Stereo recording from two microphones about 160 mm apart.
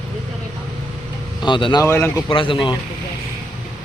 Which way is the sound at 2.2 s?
35° left (ahead or behind).